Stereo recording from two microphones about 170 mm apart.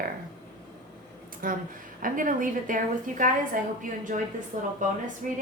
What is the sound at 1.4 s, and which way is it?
A woman's voice, 55° right (ahead or behind).